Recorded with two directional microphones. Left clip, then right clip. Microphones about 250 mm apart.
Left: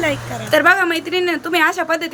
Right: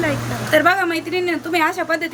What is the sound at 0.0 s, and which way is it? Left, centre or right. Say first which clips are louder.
Speech: left 1 dB; centre.